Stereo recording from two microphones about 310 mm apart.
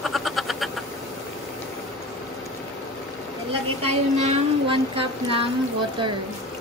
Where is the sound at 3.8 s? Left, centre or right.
Centre.